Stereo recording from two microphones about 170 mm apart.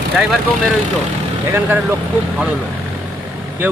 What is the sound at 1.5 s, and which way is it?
Speech, 10° right (ahead or behind).